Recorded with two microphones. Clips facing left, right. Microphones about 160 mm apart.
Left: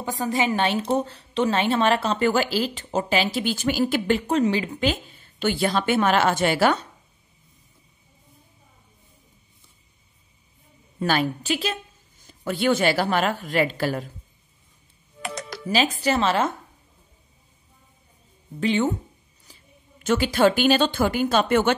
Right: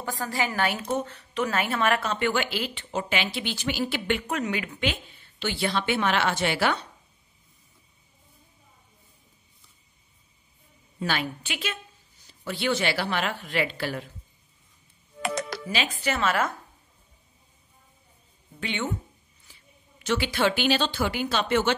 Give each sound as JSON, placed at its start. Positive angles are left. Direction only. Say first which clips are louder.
{"t": 0.0, "sound": "a woman's voice", "louder": "left 5 dB", "side_deg": 20}
{"t": 4.2, "sound": "a woman's voice", "louder": "left 8 dB", "side_deg": 30}
{"t": 11.0, "sound": "speech", "louder": "left 6 dB", "side_deg": 40}
{"t": 15.2, "sound": "music", "louder": "right 4 dB", "side_deg": -65}
{"t": 15.7, "sound": "a woman's voice", "louder": "left 8 dB", "side_deg": 35}
{"t": 18.6, "sound": "a woman's voice", "louder": "left 9 dB", "side_deg": 35}